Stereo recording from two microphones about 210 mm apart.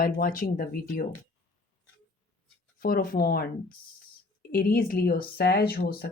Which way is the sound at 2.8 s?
45° left (ahead or behind).